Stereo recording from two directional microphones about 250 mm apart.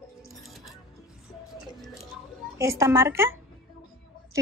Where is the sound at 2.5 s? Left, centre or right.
Centre.